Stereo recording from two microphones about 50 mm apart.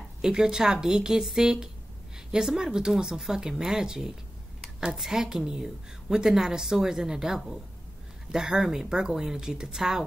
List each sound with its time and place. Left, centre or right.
0.2 s a woman's voice: centre